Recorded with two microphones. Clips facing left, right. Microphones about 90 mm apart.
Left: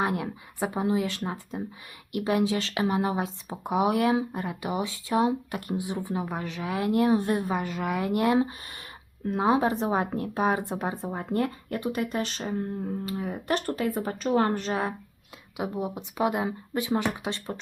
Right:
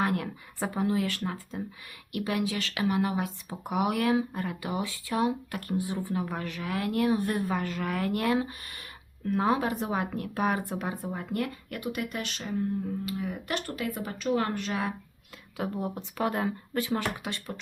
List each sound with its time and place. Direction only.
0.0 s speech: 20° left (ahead or behind)
15.5 s speech: 15° left (ahead or behind)